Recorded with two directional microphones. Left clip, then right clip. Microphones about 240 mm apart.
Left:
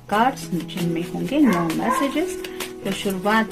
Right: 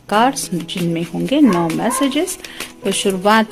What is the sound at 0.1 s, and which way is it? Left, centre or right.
Speech, right.